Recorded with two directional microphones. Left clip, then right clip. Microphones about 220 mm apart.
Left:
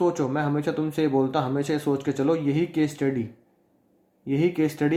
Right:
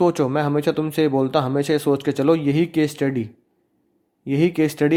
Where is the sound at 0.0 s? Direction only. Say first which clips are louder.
Right 5 dB; 40° right (ahead or behind).